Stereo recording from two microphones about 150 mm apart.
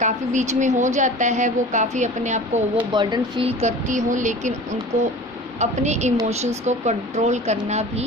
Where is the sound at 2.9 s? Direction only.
30° right (ahead or behind).